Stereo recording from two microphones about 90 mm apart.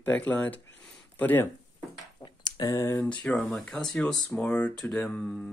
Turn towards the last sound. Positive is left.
turn(degrees=10)  # may be behind; listen again after turning